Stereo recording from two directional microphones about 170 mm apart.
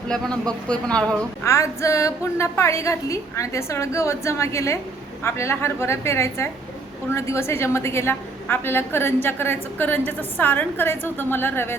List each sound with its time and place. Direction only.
0.1 s speech: 5° left (ahead or behind)
1.5 s a woman's voice: 15° left (ahead or behind)